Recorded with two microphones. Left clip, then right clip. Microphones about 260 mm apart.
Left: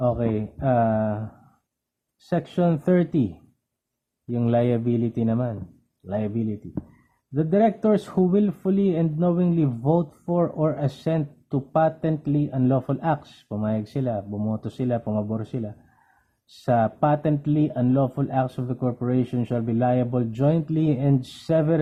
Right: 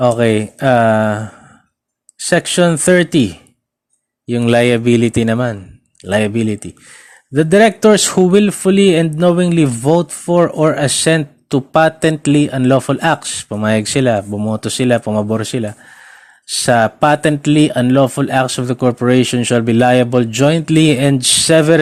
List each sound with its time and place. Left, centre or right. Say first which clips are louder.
0.1 s speech: right 12 dB; right
4.3 s speech: right 11 dB; right
9.8 s speech: right 10 dB; right
10.2 s speech: right 13 dB; right